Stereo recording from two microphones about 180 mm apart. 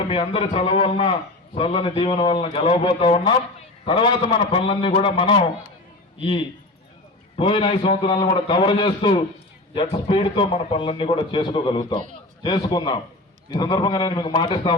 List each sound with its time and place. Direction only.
0.1 s a man's voice: 30° left (ahead or behind)
7.3 s speech: 30° left (ahead or behind)